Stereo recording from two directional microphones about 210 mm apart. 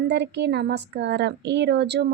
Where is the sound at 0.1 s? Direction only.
55° right (ahead or behind).